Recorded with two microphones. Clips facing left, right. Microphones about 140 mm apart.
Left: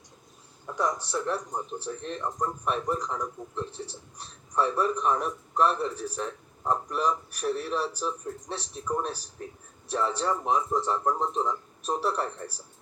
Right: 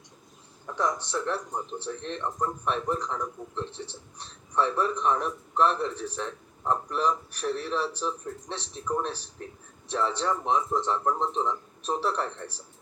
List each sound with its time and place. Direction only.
0.7 s a man's voice: 10° left (ahead or behind)
3.7 s a man's voice: 35° left (ahead or behind)
4.2 s a man's voice: 10° left (ahead or behind)
5.9 s a man's voice: 35° left (ahead or behind)
6.1 s a man's voice: 10° left (ahead or behind)
10.2 s a man's voice: 10° left (ahead or behind)